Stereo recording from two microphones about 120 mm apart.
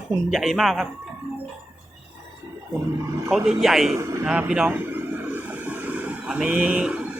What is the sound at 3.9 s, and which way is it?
Speech, 25° right (ahead or behind).